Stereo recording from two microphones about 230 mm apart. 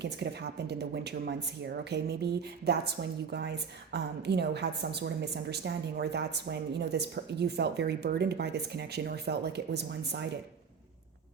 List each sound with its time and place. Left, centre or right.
0.0 s a woman's voice: right